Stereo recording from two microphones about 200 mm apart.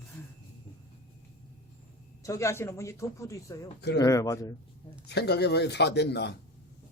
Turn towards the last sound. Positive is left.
turn(degrees=55)  # may be behind; listen again after turning